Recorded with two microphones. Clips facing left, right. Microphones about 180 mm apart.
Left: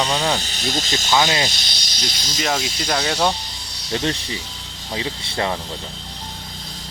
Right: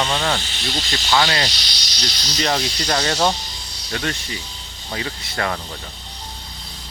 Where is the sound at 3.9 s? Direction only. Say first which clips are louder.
Left 3 dB; 25° left (ahead or behind).